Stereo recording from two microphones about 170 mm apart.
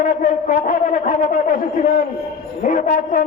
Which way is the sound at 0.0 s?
50° left (ahead or behind).